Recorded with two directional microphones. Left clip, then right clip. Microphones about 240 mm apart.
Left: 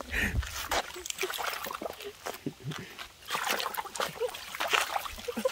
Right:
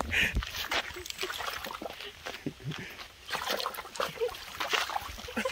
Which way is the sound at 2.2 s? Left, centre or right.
Left.